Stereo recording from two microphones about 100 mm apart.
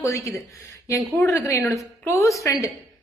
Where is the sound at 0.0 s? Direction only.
30° left (ahead or behind).